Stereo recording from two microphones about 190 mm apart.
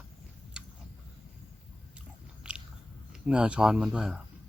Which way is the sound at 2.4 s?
5° right (ahead or behind).